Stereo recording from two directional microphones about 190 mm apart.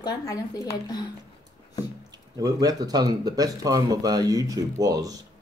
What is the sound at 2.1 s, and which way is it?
Speech, 20° right (ahead or behind).